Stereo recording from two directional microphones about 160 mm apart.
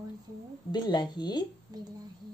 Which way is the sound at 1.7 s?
25° right (ahead or behind).